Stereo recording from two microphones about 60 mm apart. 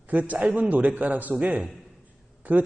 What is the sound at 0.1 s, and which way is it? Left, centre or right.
A man's voice, right.